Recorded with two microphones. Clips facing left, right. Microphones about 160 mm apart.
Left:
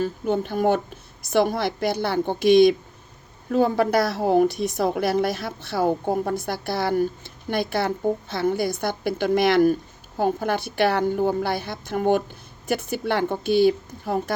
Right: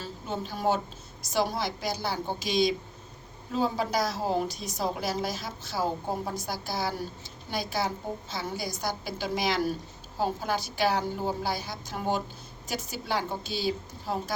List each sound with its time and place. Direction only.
0.0 s a woman's voice: 55° left (ahead or behind)